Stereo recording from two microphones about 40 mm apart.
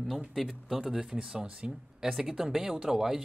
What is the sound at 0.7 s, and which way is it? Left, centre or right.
Speech, centre.